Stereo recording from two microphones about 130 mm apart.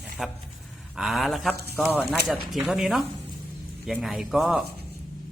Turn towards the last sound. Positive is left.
turn(degrees=0)  # may be behind; listen again after turning